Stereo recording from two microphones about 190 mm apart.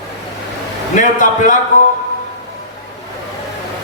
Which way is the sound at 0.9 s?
40° left (ahead or behind).